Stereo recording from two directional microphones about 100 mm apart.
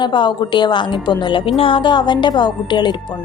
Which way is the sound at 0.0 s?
50° left (ahead or behind).